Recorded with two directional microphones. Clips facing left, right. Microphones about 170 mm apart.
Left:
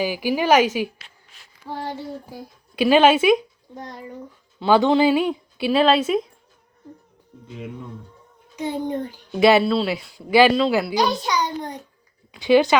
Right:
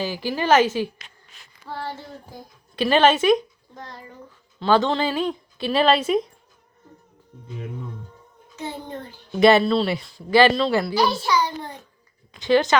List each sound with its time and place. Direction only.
0.0 s a child's voice: 10° left (ahead or behind)
8.5 s a child's voice: 15° left (ahead or behind)
10.9 s a child's voice: 20° left (ahead or behind)